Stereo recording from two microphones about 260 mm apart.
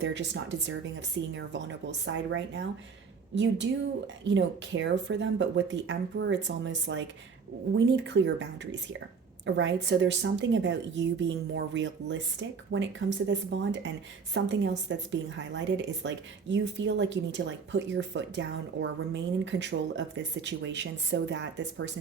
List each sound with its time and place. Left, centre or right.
0.0 s a woman's voice: right